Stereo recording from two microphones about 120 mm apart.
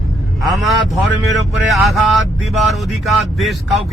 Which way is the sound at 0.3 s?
Centre (ahead or behind).